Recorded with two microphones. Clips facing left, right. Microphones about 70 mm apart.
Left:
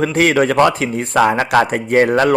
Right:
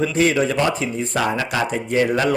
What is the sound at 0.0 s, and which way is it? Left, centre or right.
A man's voice, left.